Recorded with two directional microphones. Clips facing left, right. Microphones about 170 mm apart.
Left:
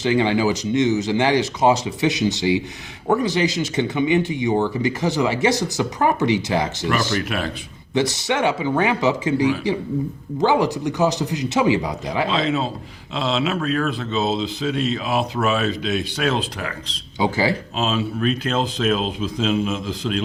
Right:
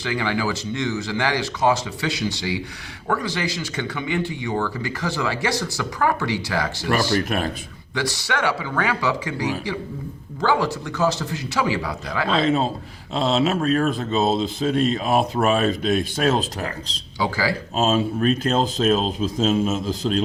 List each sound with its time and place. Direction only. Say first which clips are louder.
0.0 s speech: left 6 dB; 20° left (ahead or behind)
7.3 s speech: right 1 dB; 45° right (ahead or behind)
7.9 s speech: left 5 dB; 20° left (ahead or behind)
12.3 s speech: right 6 dB; 45° right (ahead or behind)
17.2 s speech: left 3 dB; 20° left (ahead or behind)
17.7 s speech: right 7 dB; 45° right (ahead or behind)